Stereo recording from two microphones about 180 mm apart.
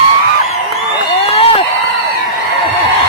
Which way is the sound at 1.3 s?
35° left (ahead or behind).